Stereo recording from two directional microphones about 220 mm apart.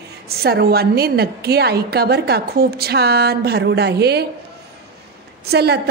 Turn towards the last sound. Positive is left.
turn(degrees=-45)  # may be behind; listen again after turning